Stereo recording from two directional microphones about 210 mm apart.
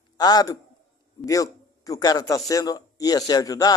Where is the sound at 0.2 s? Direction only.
20° left (ahead or behind).